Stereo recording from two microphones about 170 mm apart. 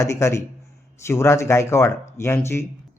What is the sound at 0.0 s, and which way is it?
Speech, 15° left (ahead or behind).